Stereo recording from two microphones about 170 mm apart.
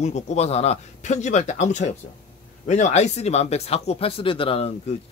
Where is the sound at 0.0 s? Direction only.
40° left (ahead or behind).